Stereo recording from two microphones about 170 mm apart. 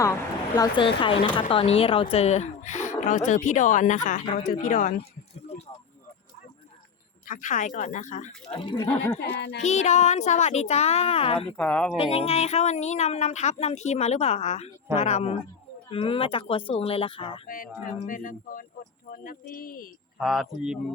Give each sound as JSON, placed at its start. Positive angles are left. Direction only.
{"t": 0.0, "sound": "speech", "side_deg": 20}
{"t": 1.0, "sound": "speech", "side_deg": 30}
{"t": 7.3, "sound": "speech", "side_deg": 50}
{"t": 8.5, "sound": "speech", "side_deg": 25}
{"t": 8.9, "sound": "speech", "side_deg": 10}
{"t": 9.6, "sound": "speech", "side_deg": 40}
{"t": 11.5, "sound": "speech", "side_deg": 5}
{"t": 11.9, "sound": "speech", "side_deg": 35}
{"t": 18.0, "sound": "speech", "side_deg": 50}
{"t": 20.1, "sound": "speech", "side_deg": 0}